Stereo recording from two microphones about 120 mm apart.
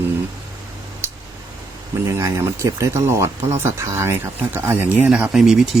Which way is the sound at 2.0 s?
25° right (ahead or behind).